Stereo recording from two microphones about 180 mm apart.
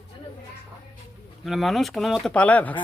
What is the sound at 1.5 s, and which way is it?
Speech, centre (ahead or behind).